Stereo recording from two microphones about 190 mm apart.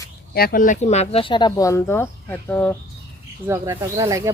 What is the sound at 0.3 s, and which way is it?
Speech, 50° left (ahead or behind).